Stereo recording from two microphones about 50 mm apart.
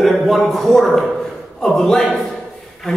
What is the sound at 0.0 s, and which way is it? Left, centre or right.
A man's voice, centre.